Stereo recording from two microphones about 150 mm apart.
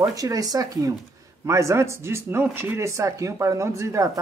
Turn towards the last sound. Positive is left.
turn(degrees=-20)  # may be behind; listen again after turning